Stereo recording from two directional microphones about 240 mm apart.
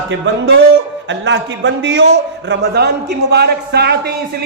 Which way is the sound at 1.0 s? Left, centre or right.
Right.